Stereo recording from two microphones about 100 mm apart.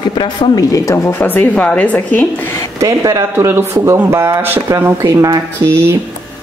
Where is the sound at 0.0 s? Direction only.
50° left (ahead or behind).